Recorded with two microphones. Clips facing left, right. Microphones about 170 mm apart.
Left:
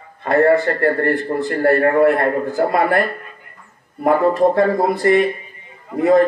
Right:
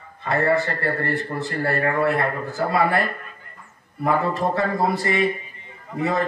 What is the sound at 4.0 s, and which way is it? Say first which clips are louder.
A man's voice: left 7 dB; 55° left (ahead or behind).